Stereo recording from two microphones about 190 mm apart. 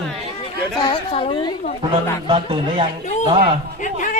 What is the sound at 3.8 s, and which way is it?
Speech, 40° left (ahead or behind).